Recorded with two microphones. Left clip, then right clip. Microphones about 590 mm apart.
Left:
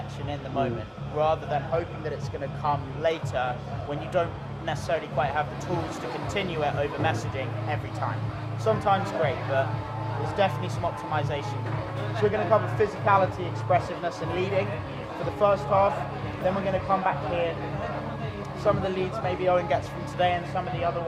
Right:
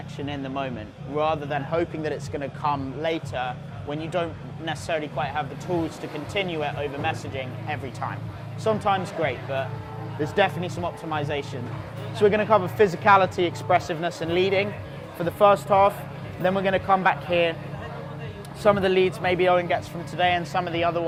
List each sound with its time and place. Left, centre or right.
0.3 s speech: right
10.3 s speech: right
18.6 s speech: right